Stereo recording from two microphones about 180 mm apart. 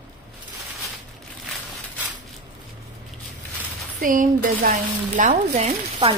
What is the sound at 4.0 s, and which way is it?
A woman's voice, 50° right (ahead or behind).